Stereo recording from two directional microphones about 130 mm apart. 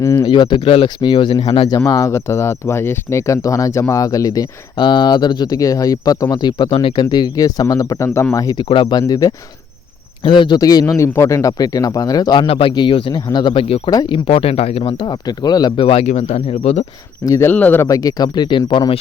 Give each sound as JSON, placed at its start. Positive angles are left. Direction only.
{"t": 0.0, "sound": "speech", "side_deg": 25}
{"t": 0.3, "sound": "a man's voice", "side_deg": 35}
{"t": 1.9, "sound": "speech", "side_deg": 25}
{"t": 8.7, "sound": "a man's voice", "side_deg": 35}
{"t": 13.9, "sound": "speech", "side_deg": 35}
{"t": 17.2, "sound": "speech", "side_deg": 25}
{"t": 17.5, "sound": "speech", "side_deg": 15}
{"t": 17.8, "sound": "a man's voice", "side_deg": 30}